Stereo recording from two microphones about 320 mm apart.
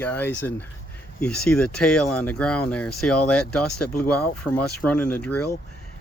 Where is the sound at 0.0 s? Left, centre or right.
Centre.